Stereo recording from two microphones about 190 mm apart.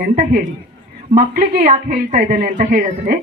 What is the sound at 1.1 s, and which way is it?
A woman's voice, 45° right (ahead or behind).